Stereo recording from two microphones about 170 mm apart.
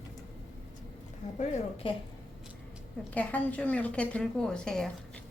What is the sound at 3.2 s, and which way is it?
A woman's voice, 10° left (ahead or behind).